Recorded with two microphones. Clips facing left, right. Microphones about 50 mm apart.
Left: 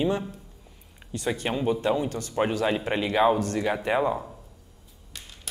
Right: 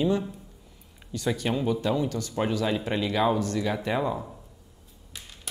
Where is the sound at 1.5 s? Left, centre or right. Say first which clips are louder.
Left 1 dB; centre.